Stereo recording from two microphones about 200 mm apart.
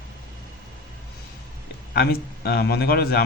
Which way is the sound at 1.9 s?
50° left (ahead or behind).